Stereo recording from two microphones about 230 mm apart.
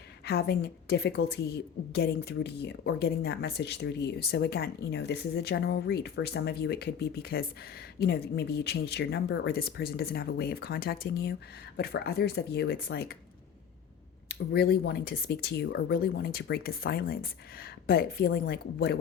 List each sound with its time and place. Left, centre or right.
0.3 s a woman's voice: left
14.3 s a woman's voice: left